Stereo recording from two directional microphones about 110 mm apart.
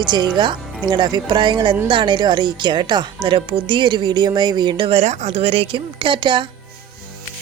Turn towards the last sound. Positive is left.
turn(degrees=-50)  # may be behind; listen again after turning